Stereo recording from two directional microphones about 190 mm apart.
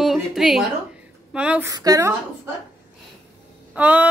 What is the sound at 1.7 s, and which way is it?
Speech, 20° right (ahead or behind).